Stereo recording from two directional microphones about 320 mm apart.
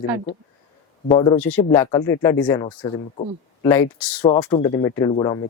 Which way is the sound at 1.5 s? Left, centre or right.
Centre.